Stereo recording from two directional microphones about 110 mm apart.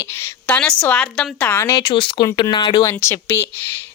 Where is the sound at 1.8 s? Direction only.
45° left (ahead or behind).